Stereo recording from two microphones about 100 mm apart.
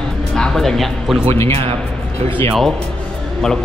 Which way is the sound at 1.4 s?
80° right.